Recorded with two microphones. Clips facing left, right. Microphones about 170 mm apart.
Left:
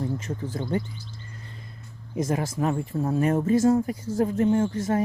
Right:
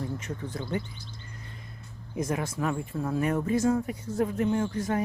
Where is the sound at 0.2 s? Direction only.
30° left (ahead or behind).